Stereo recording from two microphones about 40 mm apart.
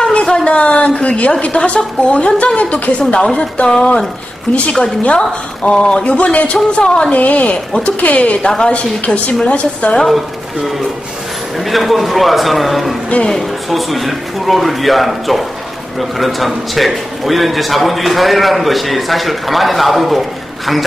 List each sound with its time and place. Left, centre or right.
0.0 s a sound: left
0.5 s a woman's voice: left
4.5 s a woman's voice: left
5.0 s speech: left
7.1 s a woman's voice: left
8.4 s speech: centre
8.6 s a woman's voice: left
11.5 s a man's voice: centre
13.2 s speech: centre
13.7 s a man's voice: centre